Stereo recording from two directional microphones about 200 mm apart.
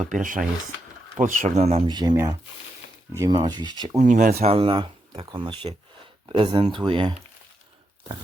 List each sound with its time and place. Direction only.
0.1 s speech: 40° right (ahead or behind)
1.9 s speech: 20° right (ahead or behind)
3.9 s speech: 40° right (ahead or behind); by 7.1 s 25° right (ahead or behind)